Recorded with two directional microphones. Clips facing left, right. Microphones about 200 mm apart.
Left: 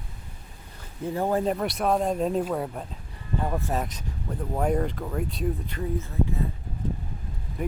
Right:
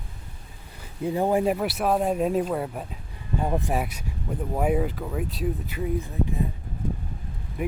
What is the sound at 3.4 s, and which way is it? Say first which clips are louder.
Speech: right 3 dB; 15° right (ahead or behind).